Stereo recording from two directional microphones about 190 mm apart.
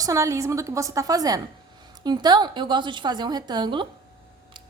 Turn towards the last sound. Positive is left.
turn(degrees=-25)  # may be behind; listen again after turning